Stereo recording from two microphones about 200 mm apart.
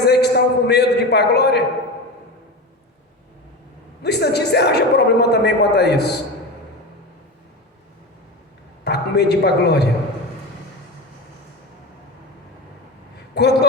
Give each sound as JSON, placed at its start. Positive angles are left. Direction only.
{"t": 0.1, "sound": "a sound", "side_deg": 55}
{"t": 4.0, "sound": "a man's voice", "side_deg": 55}
{"t": 8.8, "sound": "a man's voice", "side_deg": 55}
{"t": 13.3, "sound": "a man's voice", "side_deg": 55}